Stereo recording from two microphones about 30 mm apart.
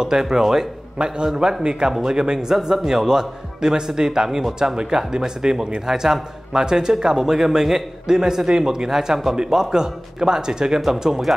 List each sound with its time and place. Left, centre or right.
0.0 s speech: centre
0.9 s a man's voice: right
1.3 s speech: centre
1.6 s a man's voice: right
6.5 s a man's voice: right